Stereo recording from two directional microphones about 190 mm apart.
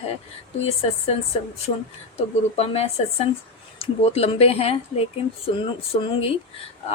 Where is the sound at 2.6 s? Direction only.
35° left (ahead or behind).